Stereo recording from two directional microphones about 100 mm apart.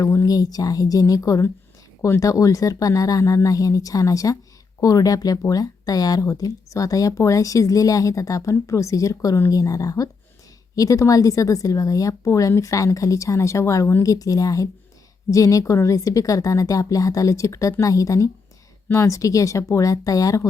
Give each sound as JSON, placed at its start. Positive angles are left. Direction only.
{"t": 0.0, "sound": "speech", "side_deg": 30}